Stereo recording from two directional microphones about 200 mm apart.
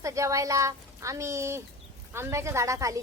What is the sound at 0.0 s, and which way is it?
A woman's voice, 15° right (ahead or behind).